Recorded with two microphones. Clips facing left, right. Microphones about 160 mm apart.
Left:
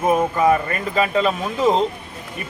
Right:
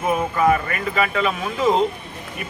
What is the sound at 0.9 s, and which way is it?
Speech, 30° left (ahead or behind).